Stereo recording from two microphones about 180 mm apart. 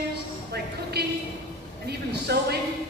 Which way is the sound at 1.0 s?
65° right (ahead or behind).